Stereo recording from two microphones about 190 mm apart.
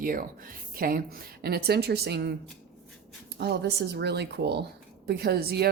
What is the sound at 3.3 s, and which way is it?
Speech, 60° right (ahead or behind).